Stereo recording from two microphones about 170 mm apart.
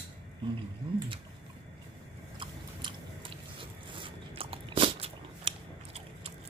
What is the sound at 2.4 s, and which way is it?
Chewing, 30° right (ahead or behind).